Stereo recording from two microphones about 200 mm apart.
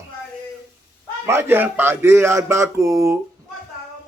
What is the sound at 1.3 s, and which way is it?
A man's voice, 10° right (ahead or behind).